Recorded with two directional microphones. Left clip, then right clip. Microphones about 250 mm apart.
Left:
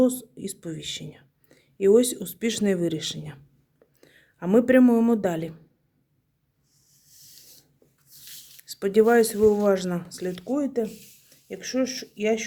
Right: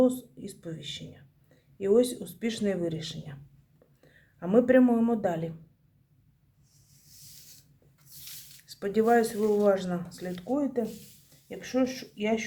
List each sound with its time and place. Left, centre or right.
0.0 s speech: left
8.6 s speech: left